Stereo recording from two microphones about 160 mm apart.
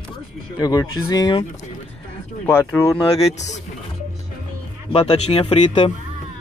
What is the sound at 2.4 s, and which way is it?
Speech, 15° left (ahead or behind).